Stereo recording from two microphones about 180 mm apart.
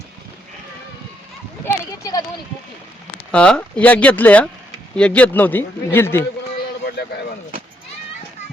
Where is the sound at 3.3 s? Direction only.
5° left (ahead or behind).